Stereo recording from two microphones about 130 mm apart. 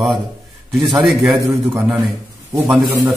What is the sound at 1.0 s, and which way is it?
Speech, centre (ahead or behind).